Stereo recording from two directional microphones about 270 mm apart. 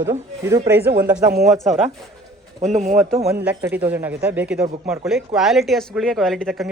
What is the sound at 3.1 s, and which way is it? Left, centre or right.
Speech, centre.